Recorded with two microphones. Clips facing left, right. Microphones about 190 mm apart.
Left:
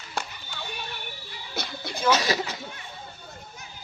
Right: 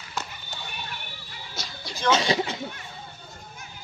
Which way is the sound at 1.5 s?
60° left (ahead or behind).